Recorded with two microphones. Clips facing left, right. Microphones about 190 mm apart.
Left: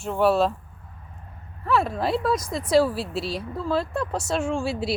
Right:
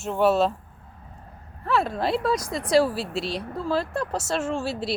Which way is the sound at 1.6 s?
Centre (ahead or behind).